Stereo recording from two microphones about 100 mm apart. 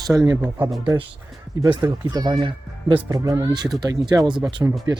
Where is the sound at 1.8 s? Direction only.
40° right (ahead or behind).